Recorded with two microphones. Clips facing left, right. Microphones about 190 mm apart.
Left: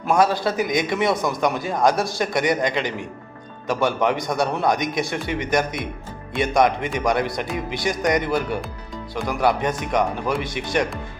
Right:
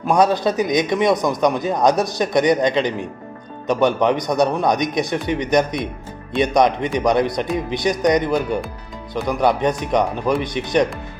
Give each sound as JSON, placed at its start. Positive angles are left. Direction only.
{"t": 0.1, "sound": "a man's voice", "side_deg": -20}